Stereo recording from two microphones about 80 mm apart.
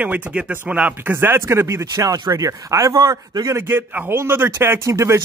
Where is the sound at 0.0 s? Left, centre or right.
Centre; by 3.0 s right.